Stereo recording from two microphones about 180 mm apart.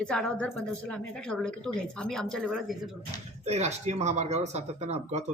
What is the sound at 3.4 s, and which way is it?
Speech, 35° right (ahead or behind).